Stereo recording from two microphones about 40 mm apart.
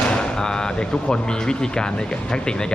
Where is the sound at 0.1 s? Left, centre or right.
Centre.